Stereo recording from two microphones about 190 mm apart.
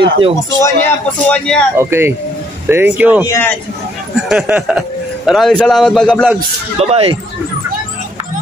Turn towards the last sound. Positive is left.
turn(degrees=-30)  # may be behind; listen again after turning